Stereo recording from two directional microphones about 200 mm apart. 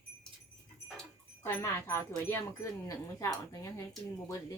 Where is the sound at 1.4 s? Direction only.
15° left (ahead or behind).